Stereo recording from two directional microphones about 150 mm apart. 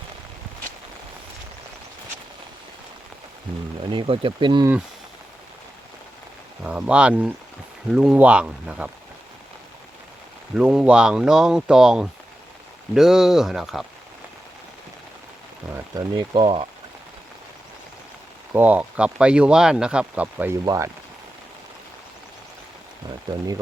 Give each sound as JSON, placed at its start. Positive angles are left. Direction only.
{"t": 3.9, "sound": "speech", "side_deg": -35}
{"t": 6.6, "sound": "speech", "side_deg": -10}
{"t": 10.5, "sound": "speech", "side_deg": -5}
{"t": 15.7, "sound": "speech", "side_deg": -30}
{"t": 18.5, "sound": "speech", "side_deg": -10}